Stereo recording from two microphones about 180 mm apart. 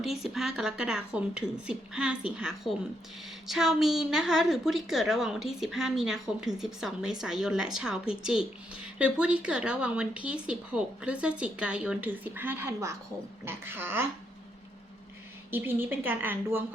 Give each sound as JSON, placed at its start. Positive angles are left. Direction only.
{"t": 0.0, "sound": "a woman's voice", "side_deg": 0}
{"t": 15.4, "sound": "a woman's voice", "side_deg": -10}